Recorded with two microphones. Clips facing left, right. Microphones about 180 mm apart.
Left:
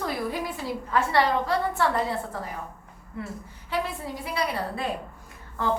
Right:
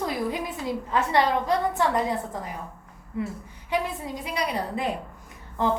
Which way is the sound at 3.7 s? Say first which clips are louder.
Right 2 dB; 20° right (ahead or behind).